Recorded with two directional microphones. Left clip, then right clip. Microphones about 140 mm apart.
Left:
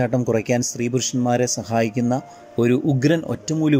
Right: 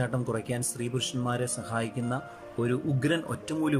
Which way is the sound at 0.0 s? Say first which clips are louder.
Left 11 dB; 35° left (ahead or behind).